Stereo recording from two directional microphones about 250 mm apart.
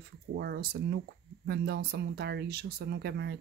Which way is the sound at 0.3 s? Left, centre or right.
Right.